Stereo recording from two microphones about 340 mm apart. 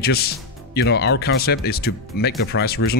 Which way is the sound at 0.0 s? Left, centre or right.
Left.